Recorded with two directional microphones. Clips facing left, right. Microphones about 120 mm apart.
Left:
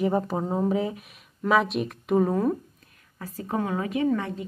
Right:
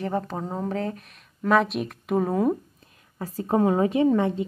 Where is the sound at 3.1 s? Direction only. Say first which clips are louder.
Right 6 dB; 30° right (ahead or behind).